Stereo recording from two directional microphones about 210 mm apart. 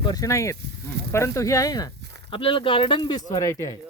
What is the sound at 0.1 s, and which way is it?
Speech, 15° left (ahead or behind).